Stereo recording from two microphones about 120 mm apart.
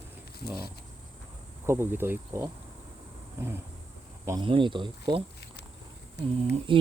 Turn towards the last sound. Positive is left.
turn(degrees=-45)  # may be behind; listen again after turning